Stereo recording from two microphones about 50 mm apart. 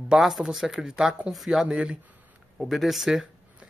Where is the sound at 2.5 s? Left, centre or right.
Centre.